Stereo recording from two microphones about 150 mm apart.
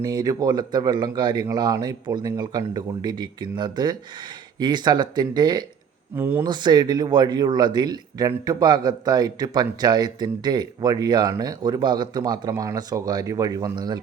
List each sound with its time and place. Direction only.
0.0 s a man's voice: 25° right (ahead or behind)
6.1 s speech: 15° right (ahead or behind)
6.4 s a man's voice: 30° right (ahead or behind)